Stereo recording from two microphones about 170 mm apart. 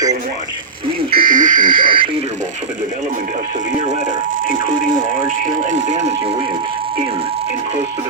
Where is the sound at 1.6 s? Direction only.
30° right (ahead or behind).